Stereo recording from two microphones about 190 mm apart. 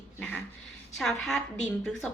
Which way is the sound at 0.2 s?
5° left (ahead or behind).